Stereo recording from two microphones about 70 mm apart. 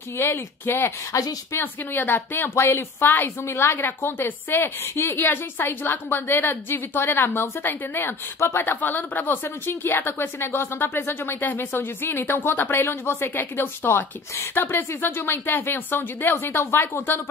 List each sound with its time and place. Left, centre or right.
0.2 s speech: left
1.1 s speech: left
1.6 s speech: left